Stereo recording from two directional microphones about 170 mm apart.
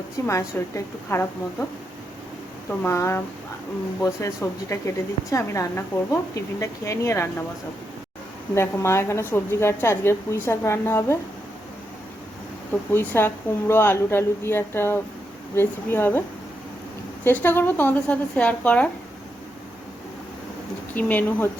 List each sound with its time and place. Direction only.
0.3 s a woman's voice: 15° left (ahead or behind)
2.8 s a woman's voice: 15° left (ahead or behind)
8.5 s a woman's voice: 15° left (ahead or behind)
12.9 s a woman's voice: 15° left (ahead or behind)
17.2 s a woman's voice: 10° left (ahead or behind)
20.9 s a woman's voice: 10° left (ahead or behind)